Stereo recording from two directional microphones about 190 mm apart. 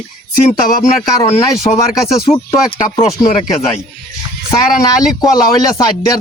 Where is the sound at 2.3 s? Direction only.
30° left (ahead or behind).